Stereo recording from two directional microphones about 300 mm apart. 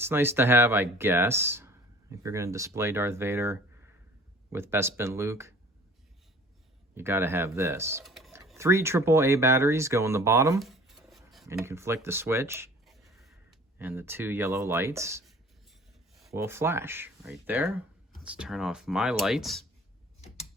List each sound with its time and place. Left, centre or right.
0.0 s speech: centre
6.9 s speech: centre
20.2 s tick-tock: left